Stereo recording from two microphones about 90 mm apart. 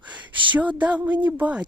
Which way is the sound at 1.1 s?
55° right (ahead or behind).